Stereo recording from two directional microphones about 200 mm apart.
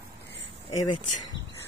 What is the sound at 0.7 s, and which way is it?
Speech, 25° left (ahead or behind).